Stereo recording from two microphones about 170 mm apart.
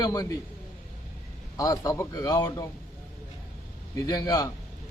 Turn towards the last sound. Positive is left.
turn(degrees=20)  # may be behind; listen again after turning